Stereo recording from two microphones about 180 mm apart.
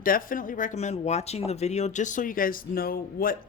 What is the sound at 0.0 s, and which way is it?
Speech, 50° left (ahead or behind).